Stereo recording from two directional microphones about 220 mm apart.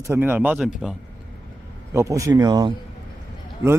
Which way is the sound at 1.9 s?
15° right (ahead or behind).